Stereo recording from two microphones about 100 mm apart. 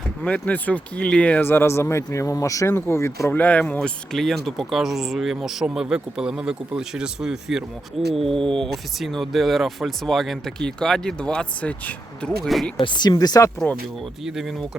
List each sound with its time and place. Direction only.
0.2 s speech: 10° left (ahead or behind); by 3.3 s 30° left (ahead or behind)
3.3 s speech: 15° left (ahead or behind)
12.8 s speech: 50° left (ahead or behind)
14.3 s speech: 5° right (ahead or behind)